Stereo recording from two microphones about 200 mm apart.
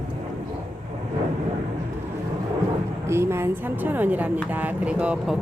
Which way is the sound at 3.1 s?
10° right (ahead or behind).